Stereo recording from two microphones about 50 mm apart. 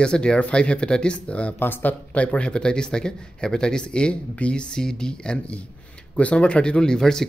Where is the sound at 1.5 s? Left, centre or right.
Left.